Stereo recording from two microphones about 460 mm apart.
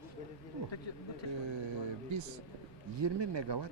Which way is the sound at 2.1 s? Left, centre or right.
Right.